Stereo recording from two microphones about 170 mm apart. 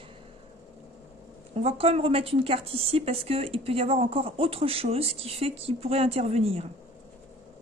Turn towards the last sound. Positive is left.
turn(degrees=-35)  # may be behind; listen again after turning